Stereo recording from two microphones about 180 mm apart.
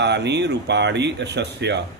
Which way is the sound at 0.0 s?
70° right (ahead or behind).